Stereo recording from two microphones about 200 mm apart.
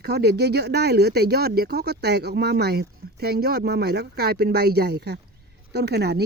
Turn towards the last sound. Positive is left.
turn(degrees=-55)  # may be behind; listen again after turning